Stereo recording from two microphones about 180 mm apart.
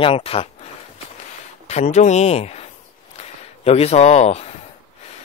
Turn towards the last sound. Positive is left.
turn(degrees=35)  # may be behind; listen again after turning